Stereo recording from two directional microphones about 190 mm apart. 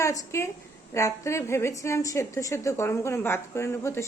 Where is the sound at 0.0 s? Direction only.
15° left (ahead or behind).